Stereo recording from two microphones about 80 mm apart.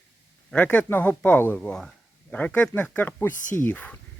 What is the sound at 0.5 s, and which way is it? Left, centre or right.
Speech, centre.